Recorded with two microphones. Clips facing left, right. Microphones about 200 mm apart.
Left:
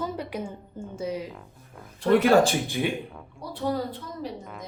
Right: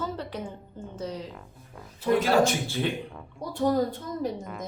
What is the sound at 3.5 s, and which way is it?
Speech, 45° right (ahead or behind).